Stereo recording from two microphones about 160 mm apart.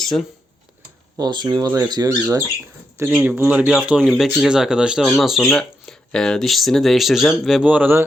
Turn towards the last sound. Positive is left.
turn(degrees=-10)  # may be behind; listen again after turning